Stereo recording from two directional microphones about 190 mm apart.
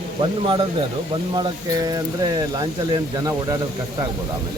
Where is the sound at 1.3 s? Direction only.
20° right (ahead or behind).